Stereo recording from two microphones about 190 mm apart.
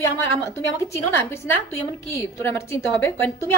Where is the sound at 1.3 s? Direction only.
15° left (ahead or behind).